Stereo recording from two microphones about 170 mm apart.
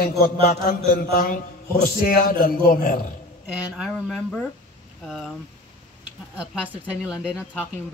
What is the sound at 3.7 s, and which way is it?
Speech, centre (ahead or behind).